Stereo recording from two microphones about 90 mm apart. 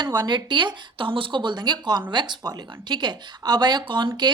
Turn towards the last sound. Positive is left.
turn(degrees=-60)  # may be behind; listen again after turning